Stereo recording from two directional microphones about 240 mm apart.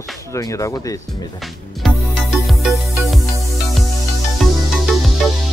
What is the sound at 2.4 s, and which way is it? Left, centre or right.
Music, centre.